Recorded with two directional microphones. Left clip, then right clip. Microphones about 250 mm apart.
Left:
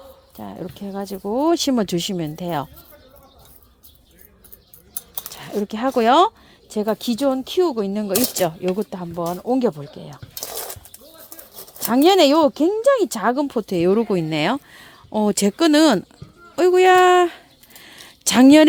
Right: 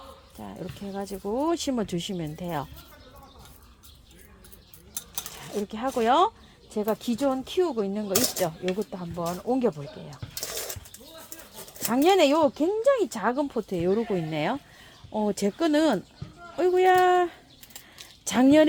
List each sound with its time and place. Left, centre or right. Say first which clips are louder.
0.3 s speech: left 7 dB; left
5.4 s speech: left 8 dB; left
11.9 s speech: left 6 dB; left
18.0 s a sound: left 9 dB; left